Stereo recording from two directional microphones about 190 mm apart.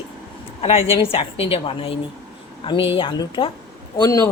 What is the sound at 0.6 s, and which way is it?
A woman's voice, 30° left (ahead or behind).